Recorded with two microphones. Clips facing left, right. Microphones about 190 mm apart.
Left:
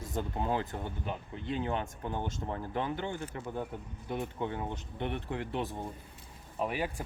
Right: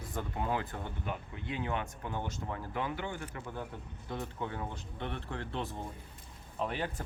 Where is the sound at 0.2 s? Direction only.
25° left (ahead or behind).